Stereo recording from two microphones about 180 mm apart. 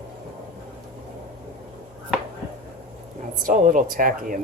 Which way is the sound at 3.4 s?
45° right (ahead or behind).